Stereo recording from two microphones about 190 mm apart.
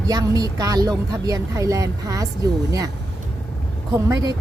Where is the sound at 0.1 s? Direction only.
20° right (ahead or behind).